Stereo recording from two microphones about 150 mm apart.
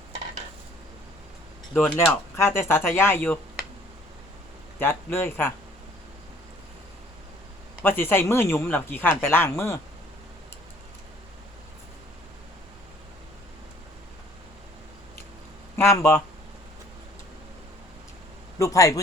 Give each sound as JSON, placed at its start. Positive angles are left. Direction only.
{"t": 2.0, "sound": "speech", "side_deg": 20}
{"t": 4.8, "sound": "speech", "side_deg": 15}
{"t": 7.8, "sound": "speech", "side_deg": 15}
{"t": 15.7, "sound": "speech", "side_deg": 20}
{"t": 18.6, "sound": "a man's voice", "side_deg": 20}